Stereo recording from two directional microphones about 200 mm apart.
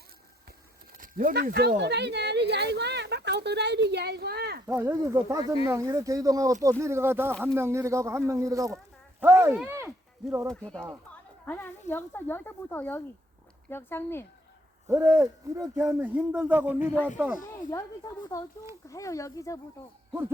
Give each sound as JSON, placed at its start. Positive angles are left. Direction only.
{"t": 0.9, "sound": "speech", "side_deg": -45}
{"t": 4.6, "sound": "speech", "side_deg": -15}
{"t": 10.5, "sound": "speech", "side_deg": 5}
{"t": 14.8, "sound": "speech", "side_deg": -15}
{"t": 15.8, "sound": "speech", "side_deg": -5}
{"t": 17.7, "sound": "speech", "side_deg": 15}